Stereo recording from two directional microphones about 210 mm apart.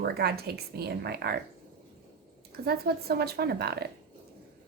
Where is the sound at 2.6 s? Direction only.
50° right (ahead or behind).